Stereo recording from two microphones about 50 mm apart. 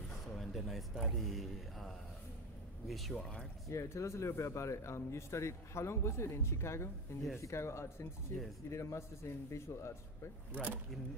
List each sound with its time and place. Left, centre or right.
0.4 s speech: centre
3.2 s speech: centre
3.6 s speech: left
10.5 s speech: right